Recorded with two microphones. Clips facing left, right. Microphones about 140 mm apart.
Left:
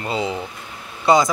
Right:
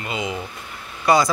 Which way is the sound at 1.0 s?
20° left (ahead or behind).